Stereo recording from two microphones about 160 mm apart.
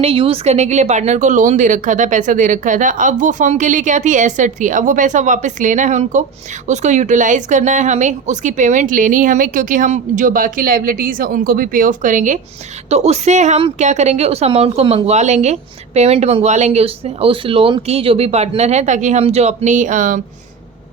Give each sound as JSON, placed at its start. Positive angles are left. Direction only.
{"t": 0.0, "sound": "speech", "side_deg": -35}
{"t": 12.9, "sound": "speech", "side_deg": -40}